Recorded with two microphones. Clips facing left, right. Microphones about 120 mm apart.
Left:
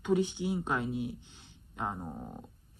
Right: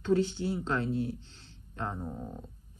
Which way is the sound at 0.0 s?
15° left (ahead or behind).